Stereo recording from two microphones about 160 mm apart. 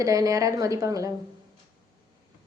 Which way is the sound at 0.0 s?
20° right (ahead or behind).